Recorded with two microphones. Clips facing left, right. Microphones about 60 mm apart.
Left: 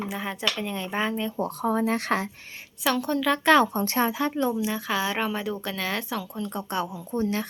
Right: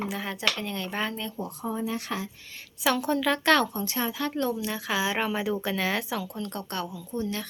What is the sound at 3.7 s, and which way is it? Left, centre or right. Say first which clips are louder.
Speech: left 6 dB; left.